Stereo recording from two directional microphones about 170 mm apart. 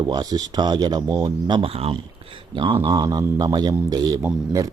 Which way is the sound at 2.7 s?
20° right (ahead or behind).